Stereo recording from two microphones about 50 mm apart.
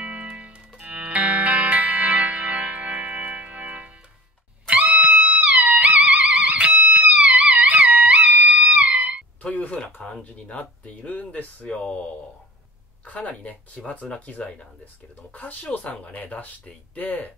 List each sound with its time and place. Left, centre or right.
0.0 s music: right
4.9 s music: right
9.4 s a sound: left
10.0 s a sound: centre
10.5 s speech: left
13.0 s speech: left